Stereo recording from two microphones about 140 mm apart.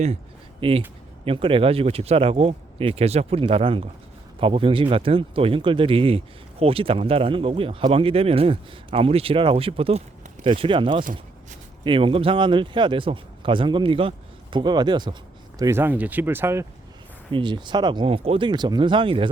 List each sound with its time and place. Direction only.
0.6 s speech: 35° right (ahead or behind)
15.8 s speech: 10° right (ahead or behind)
17.3 s speech: 35° right (ahead or behind)